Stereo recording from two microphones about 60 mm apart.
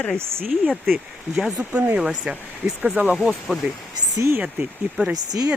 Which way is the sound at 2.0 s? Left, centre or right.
Centre.